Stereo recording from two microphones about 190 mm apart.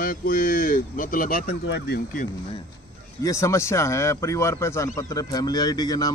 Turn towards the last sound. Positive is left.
turn(degrees=20)  # may be behind; listen again after turning